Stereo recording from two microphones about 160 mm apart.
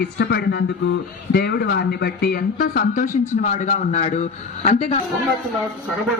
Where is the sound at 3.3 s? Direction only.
55° left (ahead or behind).